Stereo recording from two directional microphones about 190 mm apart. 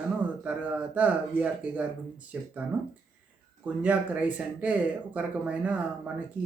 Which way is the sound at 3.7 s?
10° right (ahead or behind).